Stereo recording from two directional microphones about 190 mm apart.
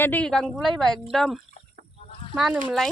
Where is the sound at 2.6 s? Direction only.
Centre (ahead or behind).